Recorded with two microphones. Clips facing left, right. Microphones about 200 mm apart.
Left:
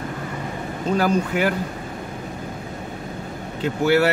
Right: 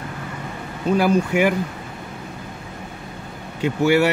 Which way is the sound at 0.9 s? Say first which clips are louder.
Right 3 dB; 10° right (ahead or behind).